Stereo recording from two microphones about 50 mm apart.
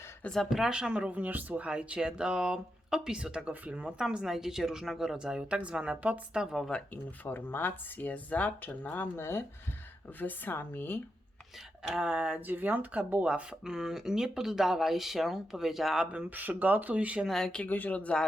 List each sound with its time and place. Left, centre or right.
0.7 s speech: centre; by 1.6 s right
1.6 s speech: right
3.9 s speech: centre
6.3 s speech: centre
7.3 s speech: left
9.1 s speech: left
10.2 s a woman's voice: left
11.8 s speech: centre
12.5 s speech: right
13.2 s speech: centre
16.3 s speech: right
17.2 s speech: centre
17.7 s speech: left